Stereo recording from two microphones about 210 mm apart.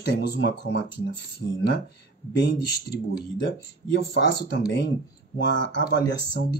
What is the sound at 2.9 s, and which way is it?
Speech, 50° left (ahead or behind).